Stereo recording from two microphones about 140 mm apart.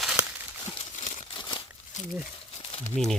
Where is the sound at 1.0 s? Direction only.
60° left (ahead or behind).